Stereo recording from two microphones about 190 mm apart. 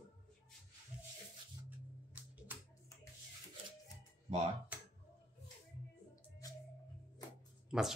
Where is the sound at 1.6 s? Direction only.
10° right (ahead or behind).